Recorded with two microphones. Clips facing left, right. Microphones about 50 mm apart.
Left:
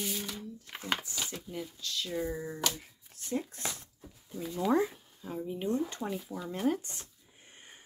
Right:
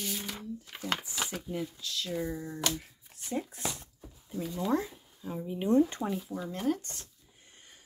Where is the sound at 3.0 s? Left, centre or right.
Centre.